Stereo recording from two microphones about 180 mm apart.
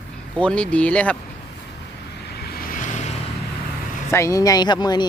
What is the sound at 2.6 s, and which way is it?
Vehicle, 50° left (ahead or behind).